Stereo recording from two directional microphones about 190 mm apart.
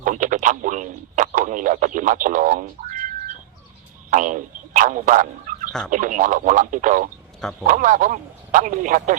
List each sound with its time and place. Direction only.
0.0 s speech: 45° right (ahead or behind)
4.1 s speech: 45° right (ahead or behind)